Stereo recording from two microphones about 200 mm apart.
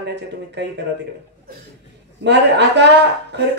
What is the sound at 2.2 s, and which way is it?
A man's voice, 60° right (ahead or behind).